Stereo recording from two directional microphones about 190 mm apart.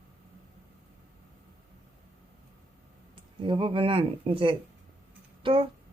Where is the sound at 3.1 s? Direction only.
25° right (ahead or behind).